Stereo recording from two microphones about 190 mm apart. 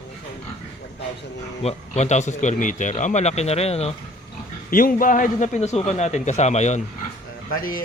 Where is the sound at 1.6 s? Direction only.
35° left (ahead or behind).